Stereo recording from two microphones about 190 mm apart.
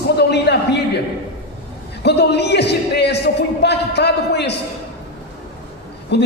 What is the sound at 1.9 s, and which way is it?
A man's voice, 60° left (ahead or behind).